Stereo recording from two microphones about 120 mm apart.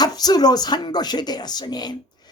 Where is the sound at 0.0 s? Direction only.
35° left (ahead or behind).